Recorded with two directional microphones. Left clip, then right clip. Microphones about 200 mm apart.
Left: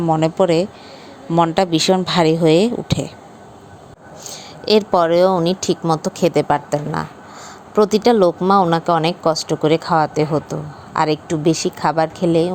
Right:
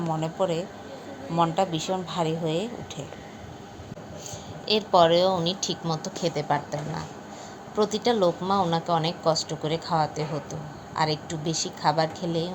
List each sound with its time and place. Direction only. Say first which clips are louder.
0.1 s a woman's voice: left 12 dB; 50° left (ahead or behind)
4.3 s speech: left 10 dB; 55° left (ahead or behind)